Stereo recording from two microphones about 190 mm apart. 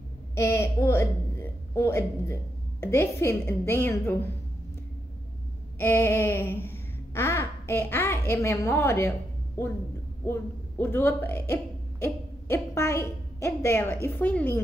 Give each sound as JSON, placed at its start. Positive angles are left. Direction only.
{"t": 0.3, "sound": "a woman's voice", "side_deg": 15}
{"t": 5.8, "sound": "a sound", "side_deg": 10}
{"t": 10.2, "sound": "a man's voice", "side_deg": 10}